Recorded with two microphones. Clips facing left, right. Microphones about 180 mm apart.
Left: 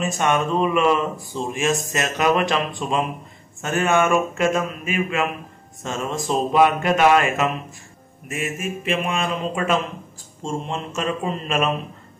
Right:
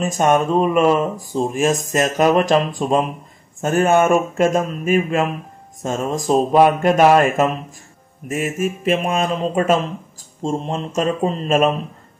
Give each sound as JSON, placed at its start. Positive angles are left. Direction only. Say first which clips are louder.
{"t": 0.2, "sound": "speech", "louder": "right 5 dB", "side_deg": -45}